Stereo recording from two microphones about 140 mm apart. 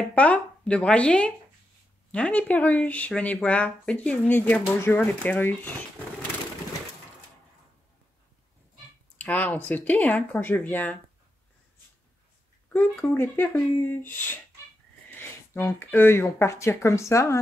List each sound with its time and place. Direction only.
0.1 s speech: 10° left (ahead or behind)
9.2 s speech: 10° left (ahead or behind)
13.1 s speech: 15° left (ahead or behind)